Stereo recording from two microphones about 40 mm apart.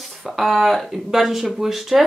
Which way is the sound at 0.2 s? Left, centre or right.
Centre.